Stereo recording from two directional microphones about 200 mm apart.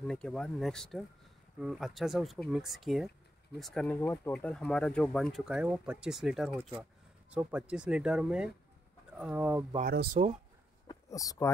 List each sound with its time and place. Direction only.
0.0 s speech: 5° left (ahead or behind)
9.8 s speech: 50° right (ahead or behind)
10.9 s speech: 15° left (ahead or behind)